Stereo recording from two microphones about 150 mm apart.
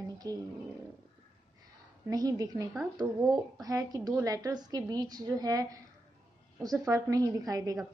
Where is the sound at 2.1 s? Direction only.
25° right (ahead or behind).